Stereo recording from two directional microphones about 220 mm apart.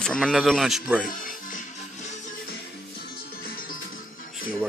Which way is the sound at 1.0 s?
40° left (ahead or behind).